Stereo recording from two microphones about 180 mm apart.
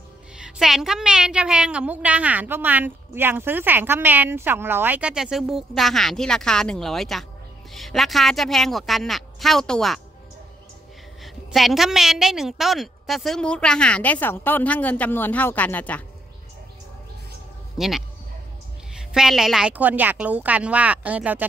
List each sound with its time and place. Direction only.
0.4 s a woman's voice: centre (ahead or behind)
11.5 s a woman's voice: centre (ahead or behind)
17.7 s a woman's voice: centre (ahead or behind)